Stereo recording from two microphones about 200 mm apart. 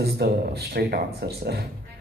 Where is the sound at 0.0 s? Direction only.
55° right (ahead or behind).